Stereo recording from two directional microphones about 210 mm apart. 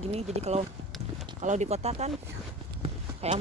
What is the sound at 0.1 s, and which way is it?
Speech, 30° right (ahead or behind).